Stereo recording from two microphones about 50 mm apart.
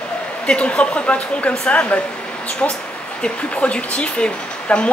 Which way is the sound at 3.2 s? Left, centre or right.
Left.